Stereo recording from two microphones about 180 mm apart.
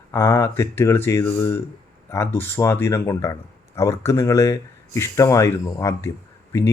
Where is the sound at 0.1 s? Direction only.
15° left (ahead or behind).